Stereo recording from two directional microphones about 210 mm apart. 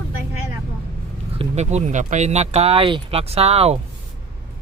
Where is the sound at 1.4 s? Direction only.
30° right (ahead or behind).